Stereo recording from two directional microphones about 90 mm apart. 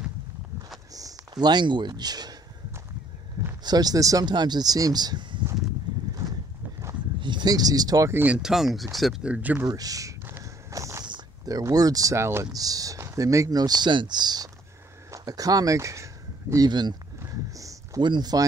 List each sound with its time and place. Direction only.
0.9 s speech: 45° right (ahead or behind)
3.6 s speech: 45° right (ahead or behind)
7.2 s speech: 60° right (ahead or behind)
8.1 s speech: 20° right (ahead or behind)
8.4 s speech: 5° right (ahead or behind)
9.2 s speech: 15° right (ahead or behind)
9.7 s speech: 45° right (ahead or behind)
10.4 s walk: 35° right (ahead or behind)
11.4 s speech: 45° right (ahead or behind)
12.5 s speech: 45° right (ahead or behind)
16.6 s speech: 50° right (ahead or behind)
17.3 s a sound: 40° right (ahead or behind)
18.0 s speech: 55° right (ahead or behind)